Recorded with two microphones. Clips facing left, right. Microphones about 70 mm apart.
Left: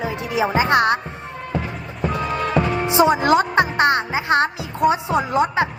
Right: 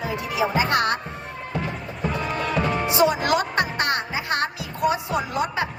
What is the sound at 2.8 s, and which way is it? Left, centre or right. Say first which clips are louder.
Music: left 5 dB; left.